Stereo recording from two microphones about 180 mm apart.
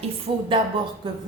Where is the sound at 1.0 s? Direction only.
25° right (ahead or behind).